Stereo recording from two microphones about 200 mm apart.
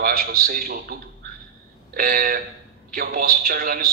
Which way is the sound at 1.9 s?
45° right (ahead or behind).